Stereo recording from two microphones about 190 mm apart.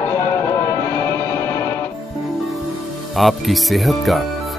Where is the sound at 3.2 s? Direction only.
Centre (ahead or behind).